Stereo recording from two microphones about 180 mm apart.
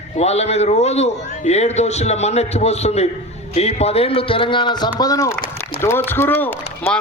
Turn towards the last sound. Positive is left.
turn(degrees=10)  # may be behind; listen again after turning